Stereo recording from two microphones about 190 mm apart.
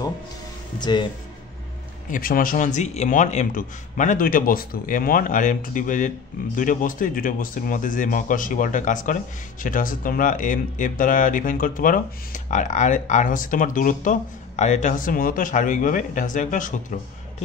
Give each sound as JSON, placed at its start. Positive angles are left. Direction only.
{"t": 0.7, "sound": "speech", "side_deg": 25}
{"t": 2.0, "sound": "speech", "side_deg": 45}